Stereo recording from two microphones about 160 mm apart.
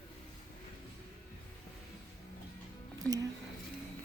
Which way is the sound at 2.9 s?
20° right (ahead or behind).